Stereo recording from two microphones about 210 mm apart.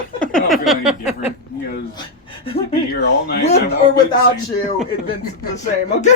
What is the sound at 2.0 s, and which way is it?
Speech, 25° left (ahead or behind).